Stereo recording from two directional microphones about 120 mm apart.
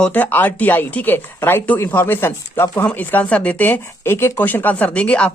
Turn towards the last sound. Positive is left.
turn(degrees=10)  # may be behind; listen again after turning